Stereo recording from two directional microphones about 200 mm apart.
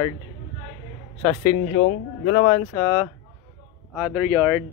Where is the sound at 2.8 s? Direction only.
5° left (ahead or behind).